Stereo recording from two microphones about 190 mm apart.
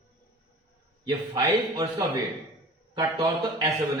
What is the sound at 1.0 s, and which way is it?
A man's voice, 20° right (ahead or behind).